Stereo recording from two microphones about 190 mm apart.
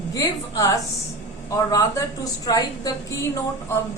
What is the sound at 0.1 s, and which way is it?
A woman's voice, 15° left (ahead or behind).